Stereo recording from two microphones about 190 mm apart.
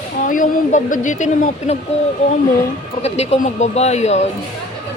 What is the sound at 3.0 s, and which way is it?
Speech, 35° left (ahead or behind).